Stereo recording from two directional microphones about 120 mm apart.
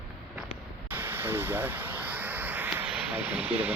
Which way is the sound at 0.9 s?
15° right (ahead or behind).